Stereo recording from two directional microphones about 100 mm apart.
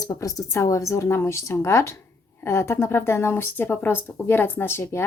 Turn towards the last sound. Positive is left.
turn(degrees=25)  # may be behind; listen again after turning